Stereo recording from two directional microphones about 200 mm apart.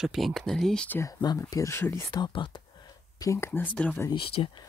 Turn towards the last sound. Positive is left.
turn(degrees=25)  # may be behind; listen again after turning